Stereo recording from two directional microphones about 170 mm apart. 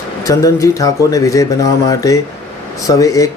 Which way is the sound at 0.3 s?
20° left (ahead or behind).